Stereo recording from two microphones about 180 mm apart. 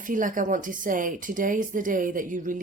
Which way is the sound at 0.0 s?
45° right (ahead or behind).